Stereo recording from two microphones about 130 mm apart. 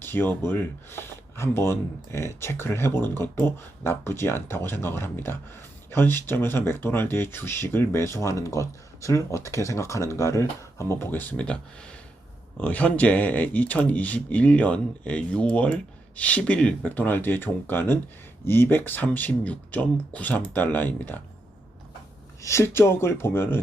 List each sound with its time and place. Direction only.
0.0 s speech: 15° left (ahead or behind)
22.4 s speech: 20° left (ahead or behind)